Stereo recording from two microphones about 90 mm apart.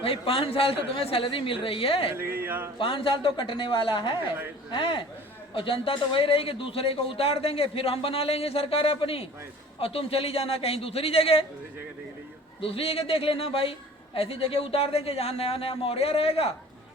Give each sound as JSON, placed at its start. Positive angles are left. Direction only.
{"t": 0.0, "sound": "speech", "side_deg": 90}
{"t": 2.1, "sound": "speech", "side_deg": -25}
{"t": 2.7, "sound": "a man's voice", "side_deg": 70}
{"t": 5.5, "sound": "speech", "side_deg": 80}
{"t": 12.6, "sound": "speech", "side_deg": 90}